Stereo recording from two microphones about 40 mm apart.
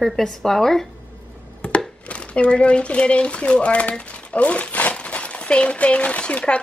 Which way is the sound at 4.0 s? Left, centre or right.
Left.